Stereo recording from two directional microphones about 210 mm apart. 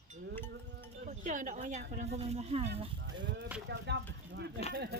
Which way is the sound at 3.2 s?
55° right (ahead or behind).